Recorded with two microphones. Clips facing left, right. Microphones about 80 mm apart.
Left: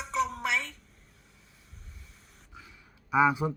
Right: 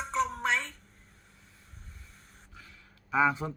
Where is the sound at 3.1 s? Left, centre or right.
Centre.